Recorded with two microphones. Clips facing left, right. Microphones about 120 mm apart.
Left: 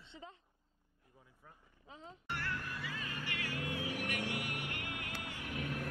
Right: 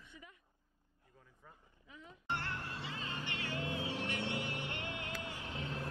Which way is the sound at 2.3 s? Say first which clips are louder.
Even; 25° right (ahead or behind).